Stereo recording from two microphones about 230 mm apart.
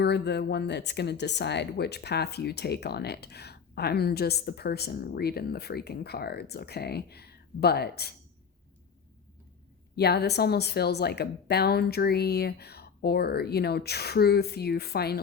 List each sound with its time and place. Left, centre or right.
0.0 s speech: left
9.9 s speech: left